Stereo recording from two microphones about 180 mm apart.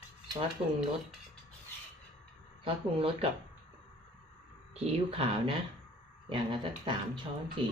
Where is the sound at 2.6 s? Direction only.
30° right (ahead or behind).